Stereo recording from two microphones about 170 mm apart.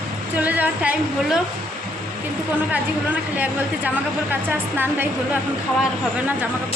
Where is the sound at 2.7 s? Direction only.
10° right (ahead or behind).